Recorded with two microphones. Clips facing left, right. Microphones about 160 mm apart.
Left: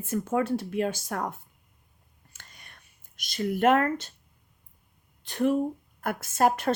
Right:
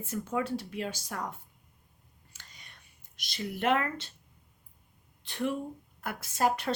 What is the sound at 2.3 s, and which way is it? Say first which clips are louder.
Whispering: left 3 dB; 50° left (ahead or behind).